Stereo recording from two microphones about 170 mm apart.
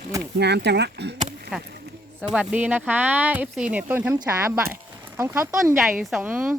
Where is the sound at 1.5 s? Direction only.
5° right (ahead or behind).